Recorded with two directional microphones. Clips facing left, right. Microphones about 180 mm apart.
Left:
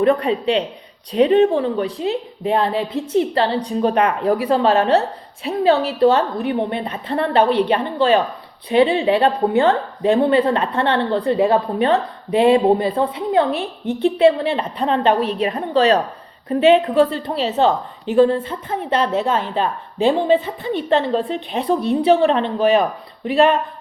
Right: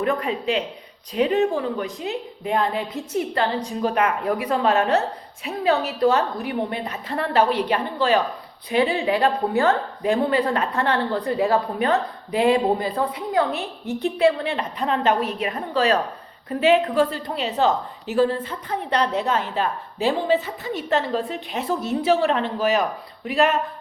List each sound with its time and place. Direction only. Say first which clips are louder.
0.0 s a woman's voice: left 7 dB; 30° left (ahead or behind)